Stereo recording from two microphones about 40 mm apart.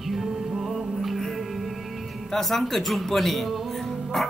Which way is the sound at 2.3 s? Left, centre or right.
Centre.